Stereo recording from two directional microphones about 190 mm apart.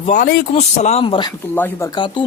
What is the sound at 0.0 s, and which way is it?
Speech, 45° left (ahead or behind).